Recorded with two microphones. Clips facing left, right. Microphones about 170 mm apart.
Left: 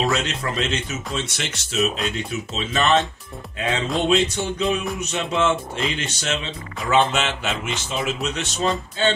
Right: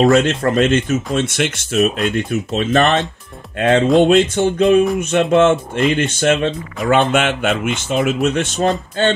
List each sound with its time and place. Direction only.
0.0 s speech: 50° right (ahead or behind)